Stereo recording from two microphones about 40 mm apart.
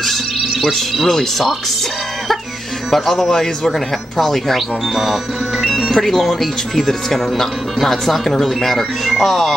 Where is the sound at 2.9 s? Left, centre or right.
Centre.